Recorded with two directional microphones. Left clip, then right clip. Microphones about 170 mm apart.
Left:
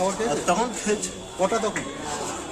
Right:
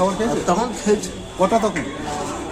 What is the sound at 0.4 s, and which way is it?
Speech, 10° left (ahead or behind).